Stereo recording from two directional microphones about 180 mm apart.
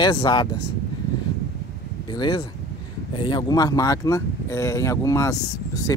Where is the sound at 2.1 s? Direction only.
25° left (ahead or behind).